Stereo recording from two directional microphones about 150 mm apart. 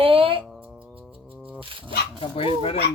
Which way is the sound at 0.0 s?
35° right (ahead or behind).